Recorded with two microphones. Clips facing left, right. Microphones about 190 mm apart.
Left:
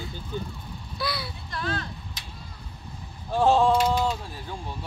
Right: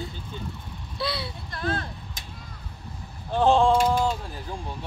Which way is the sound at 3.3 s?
5° left (ahead or behind).